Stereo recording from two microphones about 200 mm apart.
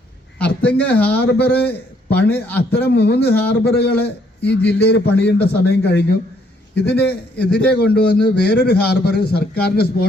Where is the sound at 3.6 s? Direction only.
55° left (ahead or behind).